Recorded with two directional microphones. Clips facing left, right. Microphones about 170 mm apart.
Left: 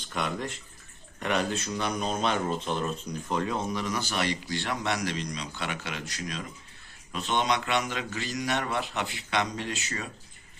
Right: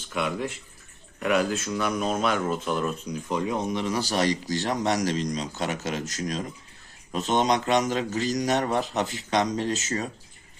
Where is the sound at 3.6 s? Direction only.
25° right (ahead or behind).